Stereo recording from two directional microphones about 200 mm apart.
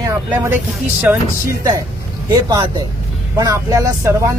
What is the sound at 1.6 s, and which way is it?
Speech, 15° right (ahead or behind).